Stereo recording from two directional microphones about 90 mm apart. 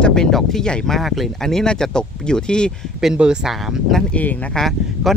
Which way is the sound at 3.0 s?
5° right (ahead or behind).